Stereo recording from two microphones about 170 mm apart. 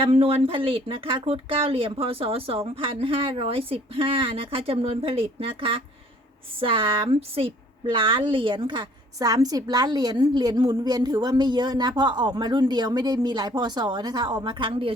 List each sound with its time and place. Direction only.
0.0 s a woman's voice: 35° right (ahead or behind)